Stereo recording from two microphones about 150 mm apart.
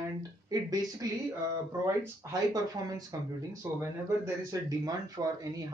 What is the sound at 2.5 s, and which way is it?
Speech, 25° right (ahead or behind).